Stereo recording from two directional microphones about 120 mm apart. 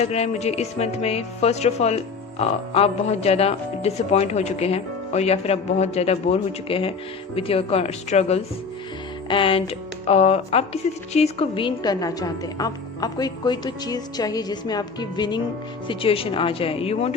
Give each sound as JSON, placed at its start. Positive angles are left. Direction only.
{"t": 0.0, "sound": "speech", "side_deg": 65}
{"t": 9.3, "sound": "speech", "side_deg": 45}
{"t": 15.9, "sound": "speech", "side_deg": 50}